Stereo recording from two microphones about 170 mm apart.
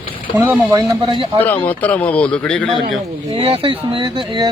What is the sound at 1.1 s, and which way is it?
Speech, 30° right (ahead or behind).